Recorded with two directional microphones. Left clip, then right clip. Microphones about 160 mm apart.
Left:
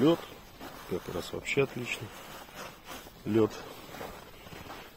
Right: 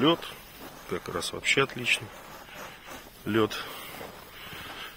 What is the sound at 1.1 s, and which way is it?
Speech, centre (ahead or behind).